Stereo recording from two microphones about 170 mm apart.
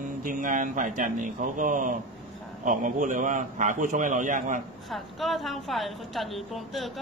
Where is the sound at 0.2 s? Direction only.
50° right (ahead or behind).